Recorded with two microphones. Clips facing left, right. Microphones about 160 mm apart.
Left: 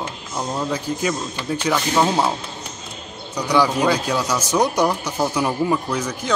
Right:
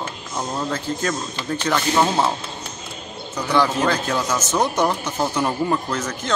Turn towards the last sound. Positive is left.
turn(degrees=10)  # may be behind; listen again after turning